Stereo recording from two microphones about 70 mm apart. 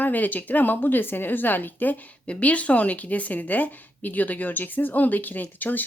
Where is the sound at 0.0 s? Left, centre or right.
Left.